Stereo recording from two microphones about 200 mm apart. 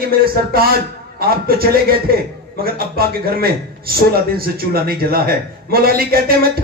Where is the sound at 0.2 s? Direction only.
50° right (ahead or behind).